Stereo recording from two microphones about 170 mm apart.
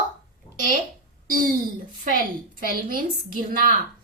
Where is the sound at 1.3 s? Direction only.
55° right (ahead or behind).